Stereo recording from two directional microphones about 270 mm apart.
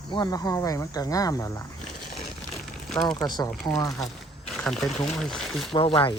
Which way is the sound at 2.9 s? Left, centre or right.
Centre.